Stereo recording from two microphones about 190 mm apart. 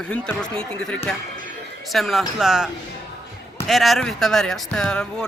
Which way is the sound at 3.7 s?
Centre (ahead or behind).